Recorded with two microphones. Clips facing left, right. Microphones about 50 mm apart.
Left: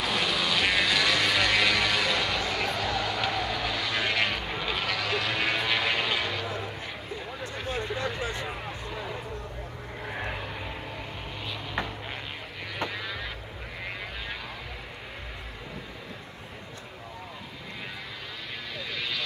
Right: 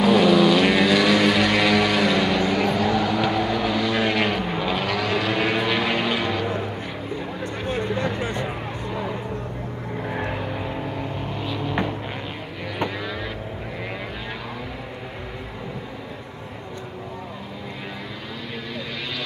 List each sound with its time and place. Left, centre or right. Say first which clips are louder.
0.0 s vehicle: right 12 dB; centre
7.6 s vehicle: right 6 dB; right
8.2 s a sound: right 6 dB; right
10.3 s vehicle: right 8 dB; centre
12.7 s vehicle: right 6 dB; centre